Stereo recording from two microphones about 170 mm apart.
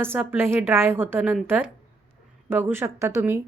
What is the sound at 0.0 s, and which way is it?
A woman's voice, 15° right (ahead or behind).